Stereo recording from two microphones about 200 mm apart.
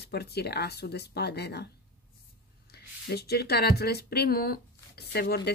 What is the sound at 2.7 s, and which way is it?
Speech, 50° left (ahead or behind).